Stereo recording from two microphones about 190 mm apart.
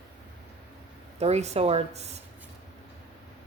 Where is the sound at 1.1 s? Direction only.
35° right (ahead or behind).